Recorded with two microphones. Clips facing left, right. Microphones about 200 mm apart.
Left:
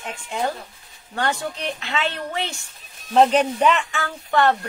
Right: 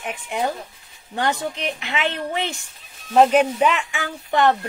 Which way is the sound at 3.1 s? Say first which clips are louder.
Right 1 dB; 5° right (ahead or behind).